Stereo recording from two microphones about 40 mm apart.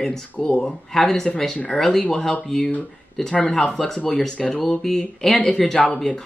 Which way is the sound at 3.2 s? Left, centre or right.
Centre.